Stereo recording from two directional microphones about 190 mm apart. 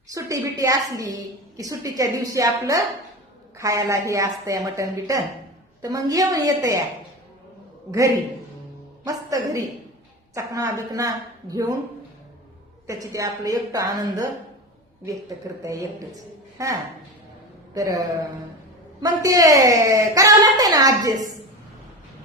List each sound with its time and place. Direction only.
0.1 s a woman's voice: 15° right (ahead or behind)
7.9 s a woman's voice: 20° right (ahead or behind)
12.9 s a woman's voice: 20° right (ahead or behind)
15.6 s a woman's voice: 15° right (ahead or behind)
17.7 s a woman's voice: 20° right (ahead or behind)
19.0 s a woman's voice: 20° right (ahead or behind)